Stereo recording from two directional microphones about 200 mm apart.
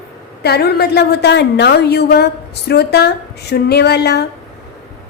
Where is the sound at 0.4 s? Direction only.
55° left (ahead or behind).